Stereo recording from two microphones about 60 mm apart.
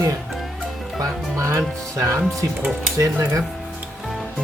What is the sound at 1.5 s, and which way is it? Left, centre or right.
Speech, right.